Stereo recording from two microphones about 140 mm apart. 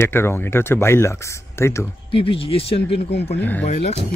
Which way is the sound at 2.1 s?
40° left (ahead or behind).